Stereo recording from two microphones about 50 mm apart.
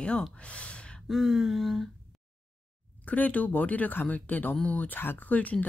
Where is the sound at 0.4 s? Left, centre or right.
Left.